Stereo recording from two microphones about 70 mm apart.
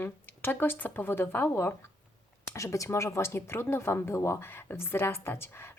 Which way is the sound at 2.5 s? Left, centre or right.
Left.